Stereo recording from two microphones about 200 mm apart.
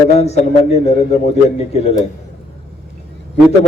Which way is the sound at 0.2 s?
30° left (ahead or behind).